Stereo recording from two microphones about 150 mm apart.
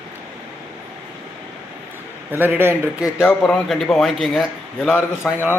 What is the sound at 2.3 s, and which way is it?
Speech, 15° right (ahead or behind).